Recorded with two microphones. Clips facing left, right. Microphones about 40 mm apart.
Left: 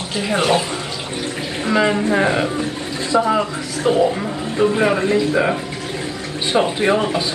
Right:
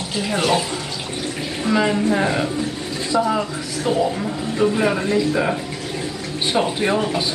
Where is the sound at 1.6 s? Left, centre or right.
Left.